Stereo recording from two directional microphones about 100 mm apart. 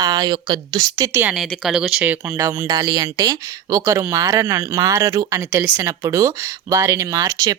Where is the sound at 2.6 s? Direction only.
40° right (ahead or behind).